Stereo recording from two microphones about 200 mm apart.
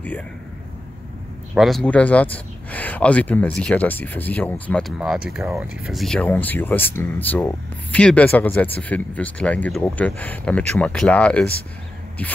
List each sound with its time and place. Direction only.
1.5 s speech: centre (ahead or behind)